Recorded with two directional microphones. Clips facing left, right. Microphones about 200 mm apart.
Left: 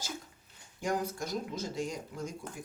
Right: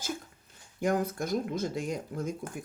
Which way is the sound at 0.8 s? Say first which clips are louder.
Right 5 dB; 55° right (ahead or behind).